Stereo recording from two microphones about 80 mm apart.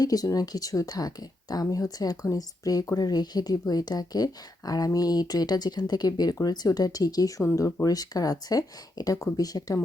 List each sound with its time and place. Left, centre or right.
0.0 s speech: left